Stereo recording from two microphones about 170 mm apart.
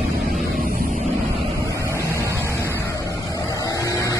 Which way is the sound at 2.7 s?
15° left (ahead or behind).